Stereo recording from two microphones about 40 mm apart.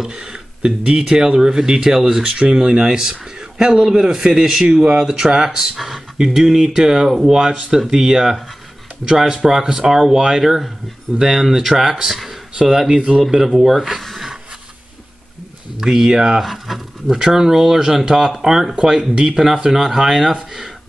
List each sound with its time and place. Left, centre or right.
0.0 s speech: right
2.2 s speech: right
12.1 s speech: centre
12.5 s speech: centre
15.8 s speech: centre
16.3 s speech: centre
17.2 s speech: centre